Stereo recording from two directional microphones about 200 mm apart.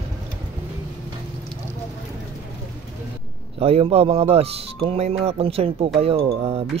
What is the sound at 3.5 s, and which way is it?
Speech, 30° right (ahead or behind).